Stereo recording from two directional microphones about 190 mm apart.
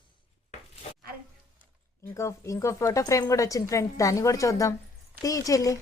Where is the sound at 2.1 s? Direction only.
15° left (ahead or behind).